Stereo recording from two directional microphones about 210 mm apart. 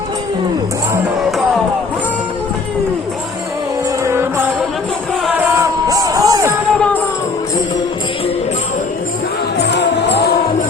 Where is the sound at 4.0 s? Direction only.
10° right (ahead or behind).